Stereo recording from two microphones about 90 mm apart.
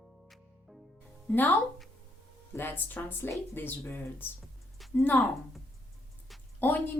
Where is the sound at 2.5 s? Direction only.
20° left (ahead or behind).